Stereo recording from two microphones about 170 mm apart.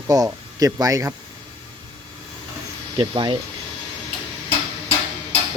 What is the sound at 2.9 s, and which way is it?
Speech, 30° right (ahead or behind).